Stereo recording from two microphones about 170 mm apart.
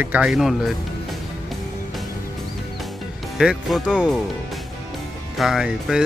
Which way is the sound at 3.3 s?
Centre (ahead or behind).